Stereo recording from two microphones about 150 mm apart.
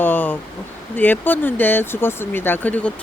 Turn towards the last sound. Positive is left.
turn(degrees=10)  # may be behind; listen again after turning